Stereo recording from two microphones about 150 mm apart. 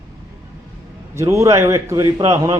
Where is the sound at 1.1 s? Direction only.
20° right (ahead or behind).